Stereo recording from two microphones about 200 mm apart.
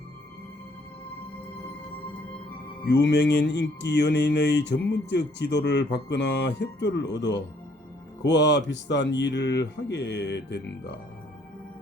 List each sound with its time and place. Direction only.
2.8 s speech: 60° left (ahead or behind)